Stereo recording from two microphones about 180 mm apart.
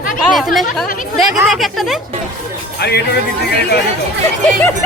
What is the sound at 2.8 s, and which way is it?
Speech, 65° left (ahead or behind).